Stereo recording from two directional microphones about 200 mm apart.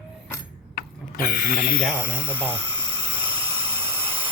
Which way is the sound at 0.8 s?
45° left (ahead or behind).